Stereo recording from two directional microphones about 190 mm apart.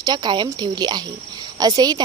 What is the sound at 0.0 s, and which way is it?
A woman's voice, 20° right (ahead or behind).